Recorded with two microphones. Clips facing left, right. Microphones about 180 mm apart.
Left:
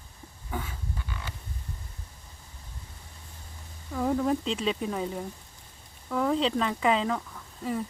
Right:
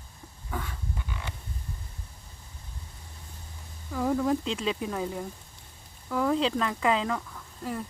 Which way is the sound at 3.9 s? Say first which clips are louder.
Even; centre (ahead or behind).